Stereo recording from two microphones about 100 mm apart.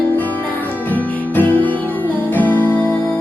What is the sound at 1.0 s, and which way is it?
Music, 15° left (ahead or behind).